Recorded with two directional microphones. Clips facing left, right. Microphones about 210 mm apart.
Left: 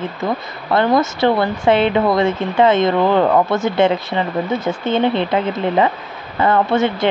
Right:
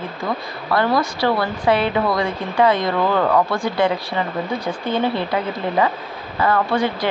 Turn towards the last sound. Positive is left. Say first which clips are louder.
# left 4 dB
turn(degrees=25)  # may be behind; listen again after turning